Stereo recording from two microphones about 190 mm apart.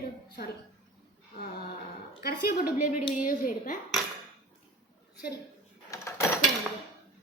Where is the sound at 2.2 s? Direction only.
55° left (ahead or behind).